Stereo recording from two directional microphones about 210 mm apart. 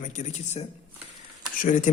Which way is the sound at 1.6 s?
35° left (ahead or behind).